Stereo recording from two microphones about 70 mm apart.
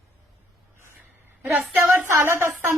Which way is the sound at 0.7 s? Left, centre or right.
Right.